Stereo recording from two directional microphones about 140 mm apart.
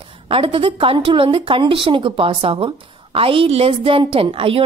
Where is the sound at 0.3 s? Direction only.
40° right (ahead or behind).